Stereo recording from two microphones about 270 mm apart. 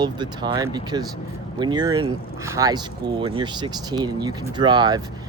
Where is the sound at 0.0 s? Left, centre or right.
Centre.